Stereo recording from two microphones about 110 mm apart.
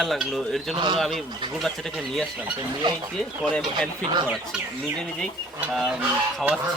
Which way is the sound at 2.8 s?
45° right (ahead or behind).